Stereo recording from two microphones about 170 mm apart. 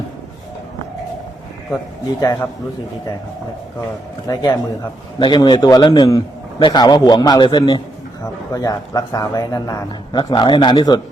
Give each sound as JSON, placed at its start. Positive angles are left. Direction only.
{"t": 4.3, "sound": "a man's voice", "side_deg": 20}